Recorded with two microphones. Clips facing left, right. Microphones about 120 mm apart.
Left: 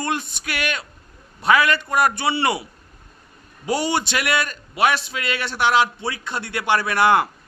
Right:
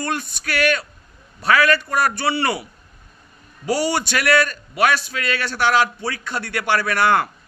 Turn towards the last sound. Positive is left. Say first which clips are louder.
# left 1 dB
turn(degrees=20)  # may be behind; listen again after turning